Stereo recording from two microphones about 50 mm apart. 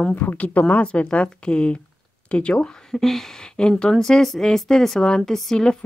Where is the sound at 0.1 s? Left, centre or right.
Left.